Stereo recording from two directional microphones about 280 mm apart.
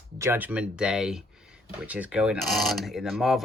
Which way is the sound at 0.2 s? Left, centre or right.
Centre.